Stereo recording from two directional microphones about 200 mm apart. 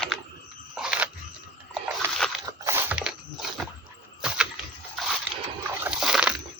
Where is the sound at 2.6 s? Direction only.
10° right (ahead or behind).